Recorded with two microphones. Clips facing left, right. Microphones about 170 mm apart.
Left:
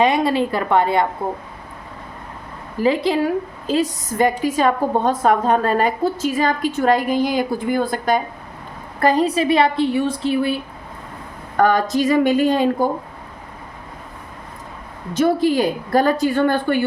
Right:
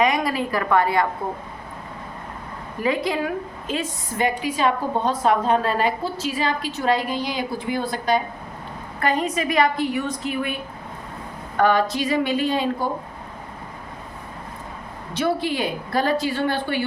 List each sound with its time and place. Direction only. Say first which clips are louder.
0.0 s a woman's voice: left 4 dB; 30° left (ahead or behind)
2.7 s a woman's voice: left 5 dB; 30° left (ahead or behind); by 8.2 s 50° left (ahead or behind)
9.0 s a woman's voice: left 6 dB; 35° left (ahead or behind)
11.5 s a woman's voice: left 3 dB; 45° left (ahead or behind)
15.1 s a woman's voice: left 7 dB; 45° left (ahead or behind)